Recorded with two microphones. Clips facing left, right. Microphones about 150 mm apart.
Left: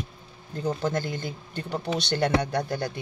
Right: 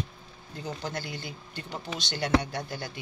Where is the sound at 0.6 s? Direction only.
50° left (ahead or behind).